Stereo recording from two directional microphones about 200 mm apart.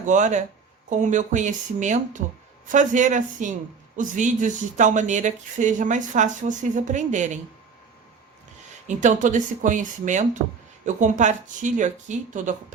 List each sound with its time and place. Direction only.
0.0 s speech: 40° right (ahead or behind)
8.9 s speech: 40° right (ahead or behind)